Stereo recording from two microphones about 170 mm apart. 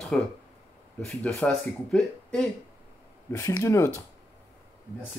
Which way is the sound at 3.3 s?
20° left (ahead or behind).